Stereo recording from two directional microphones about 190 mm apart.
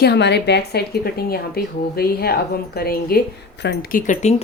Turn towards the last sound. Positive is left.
turn(degrees=40)  # may be behind; listen again after turning